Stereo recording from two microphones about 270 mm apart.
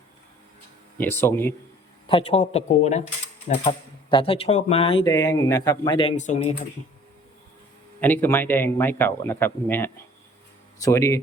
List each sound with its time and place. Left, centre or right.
0.9 s speech: centre
2.0 s speech: left
8.0 s speech: centre